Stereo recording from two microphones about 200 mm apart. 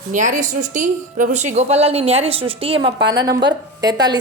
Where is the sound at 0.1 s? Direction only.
40° right (ahead or behind).